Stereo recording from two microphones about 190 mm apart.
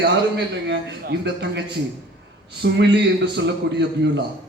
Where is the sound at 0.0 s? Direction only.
60° right (ahead or behind).